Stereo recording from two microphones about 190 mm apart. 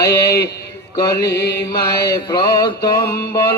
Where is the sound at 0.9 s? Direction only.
20° left (ahead or behind).